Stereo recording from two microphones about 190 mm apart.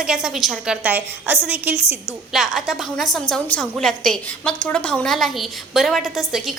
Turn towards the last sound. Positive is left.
turn(degrees=0)  # may be behind; listen again after turning